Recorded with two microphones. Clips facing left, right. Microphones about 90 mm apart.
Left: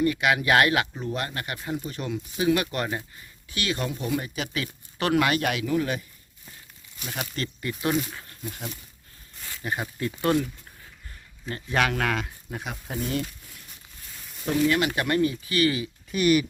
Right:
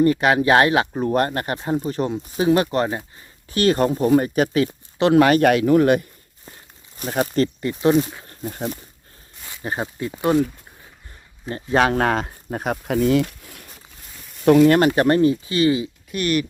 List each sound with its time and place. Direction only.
0.0 s speech: 35° right (ahead or behind)
0.9 s speech: 45° right (ahead or behind); by 3.0 s 30° right (ahead or behind)
3.5 s speech: 45° right (ahead or behind)
4.5 s speech: 30° right (ahead or behind)
5.2 s speech: 45° right (ahead or behind); by 6.1 s 60° right (ahead or behind)
6.9 s speech: 40° right (ahead or behind)
9.6 s speech: 25° right (ahead or behind)
11.4 s speech: 30° right (ahead or behind); by 12.8 s 45° right (ahead or behind)
12.9 s speech: 90° right; by 14.8 s 65° right (ahead or behind)
14.8 s speech: 40° right (ahead or behind)
16.1 s speech: 5° left (ahead or behind)